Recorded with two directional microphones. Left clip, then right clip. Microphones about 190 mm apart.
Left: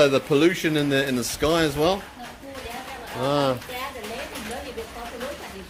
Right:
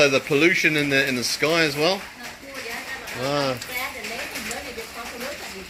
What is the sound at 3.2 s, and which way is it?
Speech, 10° left (ahead or behind).